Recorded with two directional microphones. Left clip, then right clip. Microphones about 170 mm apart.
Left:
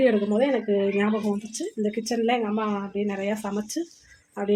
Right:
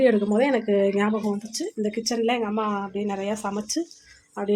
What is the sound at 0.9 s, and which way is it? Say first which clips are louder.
Speech: right 1 dB; 5° right (ahead or behind).